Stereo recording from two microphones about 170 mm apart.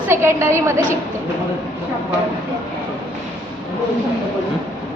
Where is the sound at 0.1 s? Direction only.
15° right (ahead or behind).